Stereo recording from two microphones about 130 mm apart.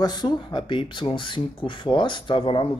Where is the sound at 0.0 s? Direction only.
30° left (ahead or behind).